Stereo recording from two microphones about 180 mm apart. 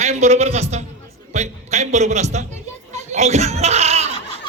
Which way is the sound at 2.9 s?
40° right (ahead or behind).